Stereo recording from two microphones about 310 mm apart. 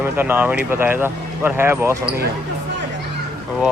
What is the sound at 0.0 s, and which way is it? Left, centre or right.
Speech, centre.